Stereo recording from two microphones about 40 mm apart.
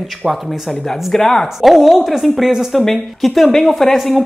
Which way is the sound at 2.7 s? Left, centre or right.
Centre.